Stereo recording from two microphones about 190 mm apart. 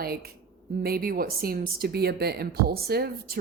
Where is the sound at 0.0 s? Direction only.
55° right (ahead or behind).